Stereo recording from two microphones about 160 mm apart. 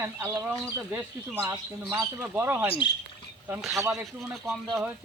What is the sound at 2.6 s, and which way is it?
Speech, 35° left (ahead or behind).